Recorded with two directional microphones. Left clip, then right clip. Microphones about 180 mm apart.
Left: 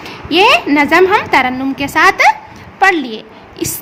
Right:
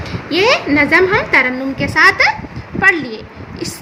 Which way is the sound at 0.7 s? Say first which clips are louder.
Left 2 dB; 60° left (ahead or behind).